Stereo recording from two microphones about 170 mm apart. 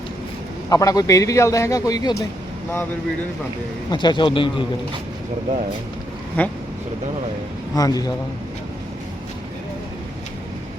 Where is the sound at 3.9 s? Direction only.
25° left (ahead or behind).